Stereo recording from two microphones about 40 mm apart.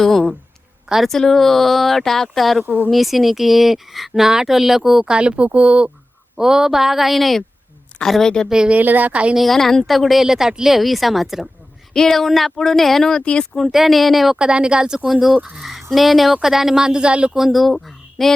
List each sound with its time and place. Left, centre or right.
0.0 s a woman's voice: centre
2.6 s a woman's voice: right
2.9 s speech: centre
5.0 s speech: right
6.3 s speech: centre
8.4 s speech: centre
8.8 s a woman's voice: right
9.4 s speech: centre
11.9 s speech: centre
13.2 s speech: left
13.7 s speech: centre
14.3 s speech: right
15.0 s speech: centre; by 17.3 s right
17.3 s speech: centre